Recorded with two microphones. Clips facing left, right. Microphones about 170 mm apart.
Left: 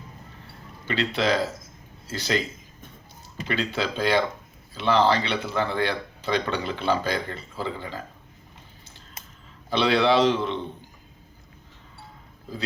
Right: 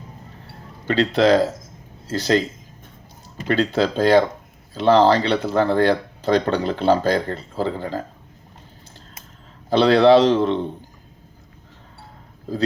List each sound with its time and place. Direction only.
0.9 s speech: 40° right (ahead or behind)
9.6 s speech: 40° right (ahead or behind)